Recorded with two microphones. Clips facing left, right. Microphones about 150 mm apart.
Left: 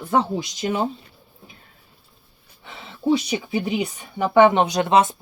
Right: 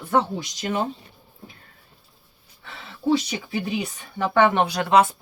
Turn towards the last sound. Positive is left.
turn(degrees=20)  # may be behind; listen again after turning